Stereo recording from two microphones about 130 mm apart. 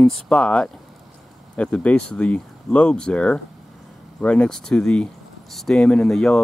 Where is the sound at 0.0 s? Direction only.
5° left (ahead or behind).